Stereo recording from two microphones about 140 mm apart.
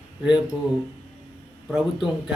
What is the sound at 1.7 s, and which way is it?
Speech, 5° right (ahead or behind).